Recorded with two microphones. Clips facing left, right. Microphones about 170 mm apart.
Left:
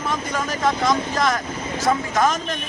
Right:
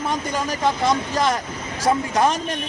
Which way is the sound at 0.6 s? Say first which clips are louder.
Even; 30° right (ahead or behind).